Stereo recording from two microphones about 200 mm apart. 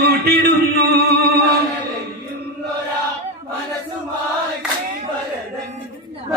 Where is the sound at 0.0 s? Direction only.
50° right (ahead or behind).